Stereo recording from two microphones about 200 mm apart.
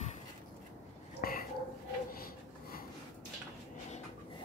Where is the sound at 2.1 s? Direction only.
45° left (ahead or behind).